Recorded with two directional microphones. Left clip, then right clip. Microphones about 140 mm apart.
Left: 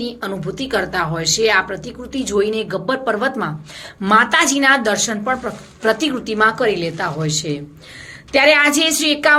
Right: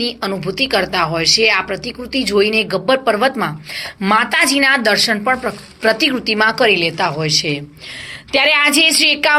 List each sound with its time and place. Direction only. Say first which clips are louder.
0.0 s a woman's voice: right 5 dB; 15° right (ahead or behind)